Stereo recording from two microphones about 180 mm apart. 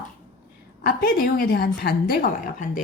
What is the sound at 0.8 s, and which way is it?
A woman's voice, 55° left (ahead or behind).